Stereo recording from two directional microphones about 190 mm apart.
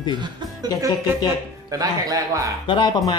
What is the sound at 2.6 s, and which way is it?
Speech, 25° left (ahead or behind).